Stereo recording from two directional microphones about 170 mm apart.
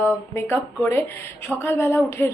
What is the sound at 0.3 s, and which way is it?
A woman's voice, 15° left (ahead or behind).